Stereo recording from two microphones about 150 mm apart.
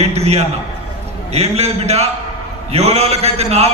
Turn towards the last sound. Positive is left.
turn(degrees=-45)  # may be behind; listen again after turning